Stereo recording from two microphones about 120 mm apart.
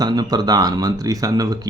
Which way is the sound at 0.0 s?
35° right (ahead or behind).